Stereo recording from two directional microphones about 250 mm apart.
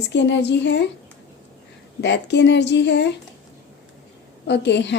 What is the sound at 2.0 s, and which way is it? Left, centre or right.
A woman's voice, left.